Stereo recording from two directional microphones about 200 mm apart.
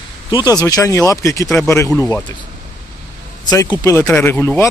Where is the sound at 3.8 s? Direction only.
10° left (ahead or behind).